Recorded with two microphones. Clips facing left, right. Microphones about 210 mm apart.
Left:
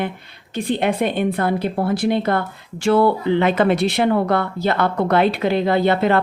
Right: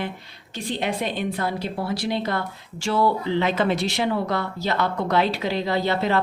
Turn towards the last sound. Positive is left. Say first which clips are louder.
# left 6 dB
turn(degrees=55)  # may be behind; listen again after turning